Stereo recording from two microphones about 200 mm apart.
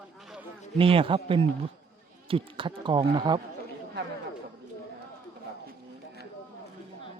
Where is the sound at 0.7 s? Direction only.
25° right (ahead or behind).